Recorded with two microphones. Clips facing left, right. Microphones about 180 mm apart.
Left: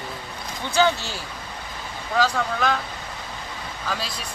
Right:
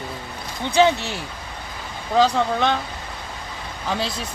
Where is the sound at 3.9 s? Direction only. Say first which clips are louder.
Right 6 dB; 25° right (ahead or behind).